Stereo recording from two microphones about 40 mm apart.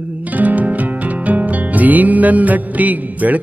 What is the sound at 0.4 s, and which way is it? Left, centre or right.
Music, right.